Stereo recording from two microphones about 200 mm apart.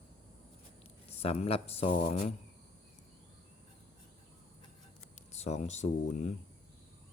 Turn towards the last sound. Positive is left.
turn(degrees=35)  # may be behind; listen again after turning